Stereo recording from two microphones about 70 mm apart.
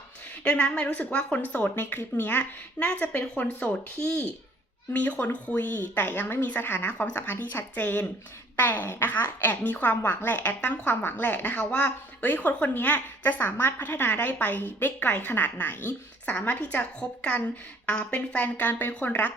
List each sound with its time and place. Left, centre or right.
0.4 s speech: centre